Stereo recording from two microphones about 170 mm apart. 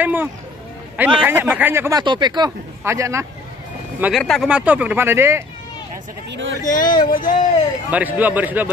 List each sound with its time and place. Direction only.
0.0 s speech: 10° right (ahead or behind)
4.2 s speech: centre (ahead or behind); by 5.4 s 15° right (ahead or behind)
6.3 s speech: 90° right
6.6 s speech: 50° left (ahead or behind)
7.9 s speech: 10° right (ahead or behind)